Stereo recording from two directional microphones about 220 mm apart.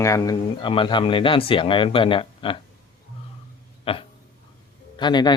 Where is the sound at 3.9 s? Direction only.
25° left (ahead or behind).